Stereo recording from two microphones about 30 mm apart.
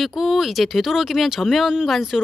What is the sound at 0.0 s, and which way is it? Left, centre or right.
Speech, centre.